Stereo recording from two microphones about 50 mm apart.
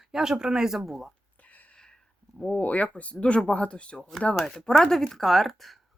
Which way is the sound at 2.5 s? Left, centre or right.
Left.